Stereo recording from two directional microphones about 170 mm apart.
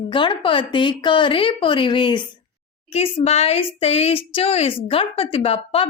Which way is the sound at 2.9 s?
40° left (ahead or behind).